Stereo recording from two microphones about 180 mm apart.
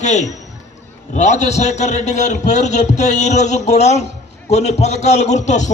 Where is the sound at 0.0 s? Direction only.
40° left (ahead or behind).